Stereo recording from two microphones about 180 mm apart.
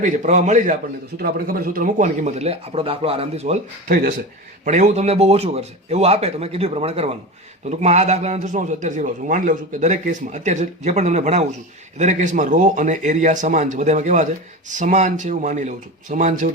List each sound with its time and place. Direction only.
0.0 s a man's voice: 40° right (ahead or behind)